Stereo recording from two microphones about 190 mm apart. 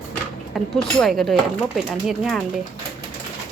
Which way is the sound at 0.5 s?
Centre (ahead or behind).